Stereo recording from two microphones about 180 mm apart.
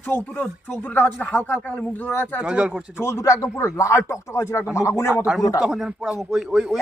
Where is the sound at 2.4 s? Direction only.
5° right (ahead or behind).